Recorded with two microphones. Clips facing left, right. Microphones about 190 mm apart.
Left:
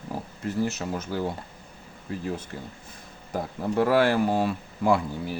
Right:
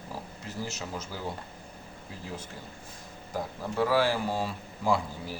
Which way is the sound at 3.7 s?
60° left (ahead or behind).